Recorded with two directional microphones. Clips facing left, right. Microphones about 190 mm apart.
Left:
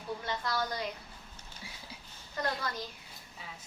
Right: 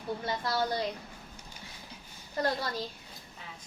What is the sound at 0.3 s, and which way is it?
Speech, 30° right (ahead or behind).